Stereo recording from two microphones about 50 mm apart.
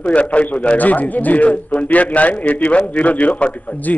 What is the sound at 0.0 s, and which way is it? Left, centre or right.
A man's voice, left.